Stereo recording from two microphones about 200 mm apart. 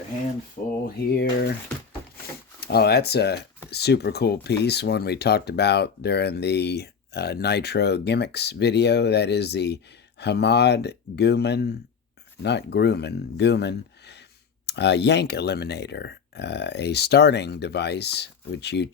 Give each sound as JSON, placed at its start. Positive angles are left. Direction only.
{"t": 1.0, "sound": "speech", "side_deg": 50}
{"t": 2.6, "sound": "speech", "side_deg": 55}